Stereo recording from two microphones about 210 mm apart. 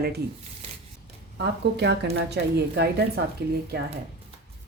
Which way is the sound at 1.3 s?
55° right (ahead or behind).